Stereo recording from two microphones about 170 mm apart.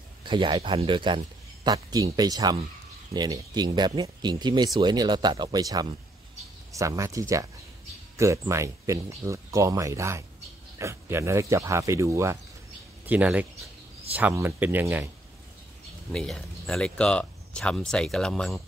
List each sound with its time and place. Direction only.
0.2 s speech: 25° right (ahead or behind); by 15.0 s 10° right (ahead or behind)
16.1 s speech: 5° left (ahead or behind)